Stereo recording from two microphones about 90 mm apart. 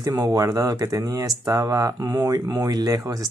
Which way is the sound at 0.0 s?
45° right (ahead or behind).